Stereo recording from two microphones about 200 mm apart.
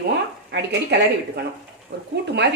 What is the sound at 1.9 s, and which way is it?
Speech, 55° right (ahead or behind).